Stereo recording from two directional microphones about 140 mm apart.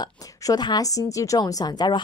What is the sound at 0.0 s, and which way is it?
A woman's voice, 30° left (ahead or behind).